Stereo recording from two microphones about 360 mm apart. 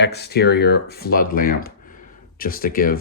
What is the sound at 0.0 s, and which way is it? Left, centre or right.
Speech, left.